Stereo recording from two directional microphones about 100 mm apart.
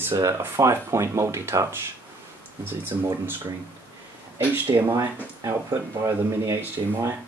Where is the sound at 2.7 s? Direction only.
20° right (ahead or behind).